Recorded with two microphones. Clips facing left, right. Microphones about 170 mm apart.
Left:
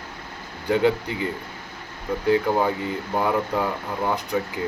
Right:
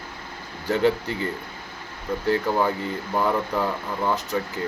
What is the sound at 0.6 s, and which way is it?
Speech, 15° left (ahead or behind).